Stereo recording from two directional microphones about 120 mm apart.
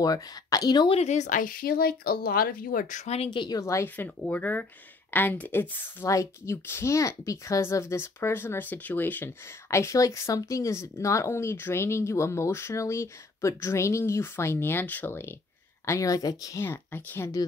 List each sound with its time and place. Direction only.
0.0 s a woman's voice: 30° left (ahead or behind)
0.8 s speech: 65° left (ahead or behind); by 1.4 s 80° left
2.9 s speech: 85° left
3.3 s speech: 30° left (ahead or behind)